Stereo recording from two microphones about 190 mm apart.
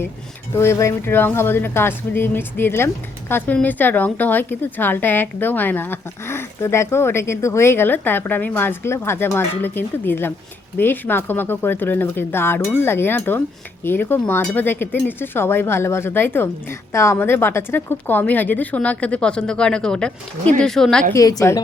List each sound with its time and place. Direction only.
0.5 s a woman's voice: 15° left (ahead or behind)
21.1 s speech: 20° left (ahead or behind)